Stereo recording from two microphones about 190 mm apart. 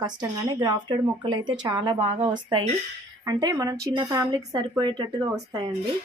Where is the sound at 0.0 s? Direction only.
20° right (ahead or behind).